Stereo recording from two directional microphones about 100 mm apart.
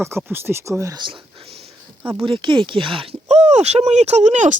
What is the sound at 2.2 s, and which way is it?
Speech, 55° right (ahead or behind).